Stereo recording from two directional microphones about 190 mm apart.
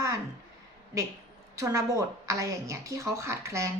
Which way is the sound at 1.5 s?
15° right (ahead or behind).